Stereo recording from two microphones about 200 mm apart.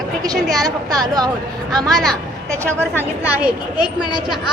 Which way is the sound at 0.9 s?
20° right (ahead or behind).